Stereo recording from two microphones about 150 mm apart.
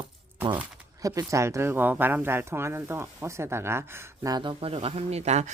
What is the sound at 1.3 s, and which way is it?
Speech, 20° right (ahead or behind).